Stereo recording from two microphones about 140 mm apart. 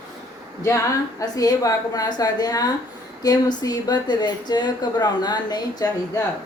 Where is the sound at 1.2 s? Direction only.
25° left (ahead or behind).